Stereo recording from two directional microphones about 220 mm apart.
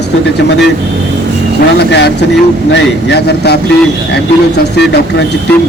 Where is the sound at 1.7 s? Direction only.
50° left (ahead or behind).